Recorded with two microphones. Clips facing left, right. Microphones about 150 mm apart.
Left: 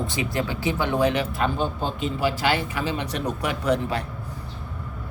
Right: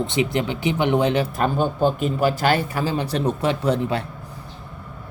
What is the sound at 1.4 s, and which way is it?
A man's voice, 50° right (ahead or behind).